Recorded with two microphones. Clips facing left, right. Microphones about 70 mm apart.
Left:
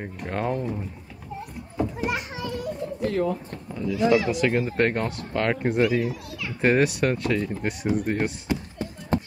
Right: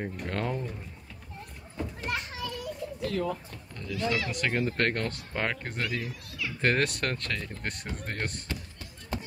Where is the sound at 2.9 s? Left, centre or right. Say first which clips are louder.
Left 6 dB; left.